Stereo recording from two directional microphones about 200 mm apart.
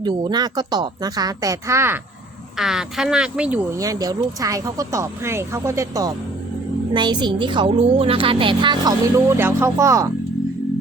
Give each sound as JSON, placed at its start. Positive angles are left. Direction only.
{"t": 0.0, "sound": "a woman's voice", "side_deg": -20}
{"t": 2.6, "sound": "speech", "side_deg": 0}
{"t": 3.8, "sound": "a woman's voice", "side_deg": -15}